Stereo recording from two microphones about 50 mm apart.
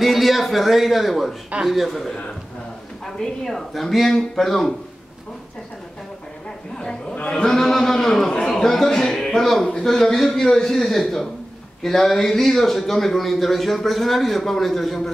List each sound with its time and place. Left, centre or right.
0.0 s a man's voice: centre
1.5 s a man's voice: right
1.9 s a man's voice: centre
3.2 s speech: centre
6.8 s chatter: centre
7.2 s a sound: centre
9.8 s a man's voice: centre